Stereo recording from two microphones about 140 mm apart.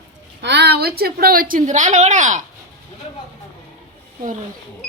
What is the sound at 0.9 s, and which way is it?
Speech, 90° right.